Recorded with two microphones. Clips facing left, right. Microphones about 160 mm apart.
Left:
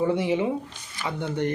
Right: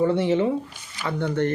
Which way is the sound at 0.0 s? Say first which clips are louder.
Right 3 dB; 10° left (ahead or behind).